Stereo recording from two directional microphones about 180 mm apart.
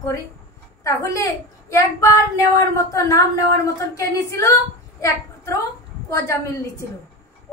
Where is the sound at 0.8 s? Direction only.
20° left (ahead or behind).